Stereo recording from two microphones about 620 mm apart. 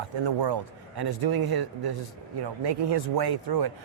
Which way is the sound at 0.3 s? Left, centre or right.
Right.